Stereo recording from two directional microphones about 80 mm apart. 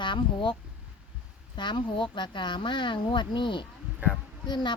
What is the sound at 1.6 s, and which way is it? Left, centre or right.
A woman's voice, left.